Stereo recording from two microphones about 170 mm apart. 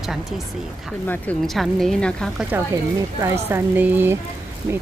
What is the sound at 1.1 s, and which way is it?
Speech, 5° left (ahead or behind).